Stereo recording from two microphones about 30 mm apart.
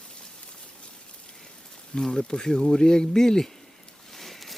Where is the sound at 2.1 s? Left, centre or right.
Left.